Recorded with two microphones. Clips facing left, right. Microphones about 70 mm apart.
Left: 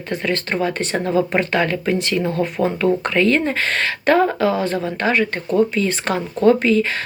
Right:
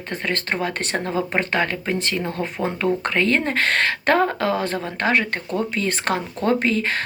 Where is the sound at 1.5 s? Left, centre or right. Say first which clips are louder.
Left 4 dB; right.